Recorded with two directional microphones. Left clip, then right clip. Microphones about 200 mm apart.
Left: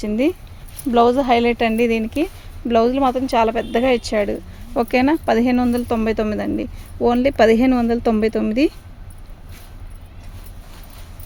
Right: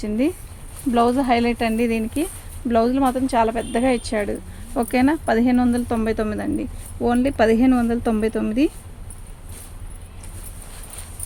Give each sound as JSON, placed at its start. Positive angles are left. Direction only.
{"t": 0.0, "sound": "speech", "side_deg": 40}